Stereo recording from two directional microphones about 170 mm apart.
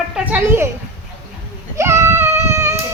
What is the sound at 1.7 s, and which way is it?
Baby cry, 15° right (ahead or behind).